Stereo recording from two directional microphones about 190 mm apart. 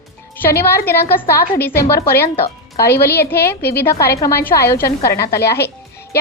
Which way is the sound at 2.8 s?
55° left (ahead or behind).